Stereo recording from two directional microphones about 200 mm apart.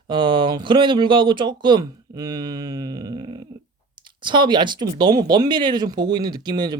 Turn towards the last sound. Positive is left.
turn(degrees=-20)  # may be behind; listen again after turning